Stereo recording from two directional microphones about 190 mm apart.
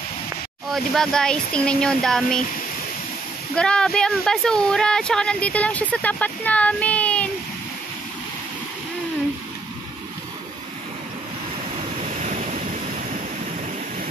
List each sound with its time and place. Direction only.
0.7 s speech: centre (ahead or behind)
3.5 s speech: 5° left (ahead or behind)
12.0 s waves: 35° right (ahead or behind)